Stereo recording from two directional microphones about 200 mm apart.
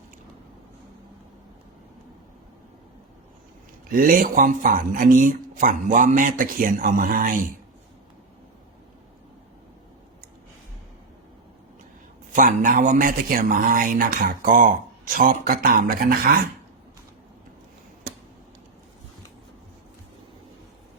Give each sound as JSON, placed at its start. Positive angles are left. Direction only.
{"t": 3.9, "sound": "speech", "side_deg": -45}
{"t": 12.3, "sound": "a man's voice", "side_deg": -40}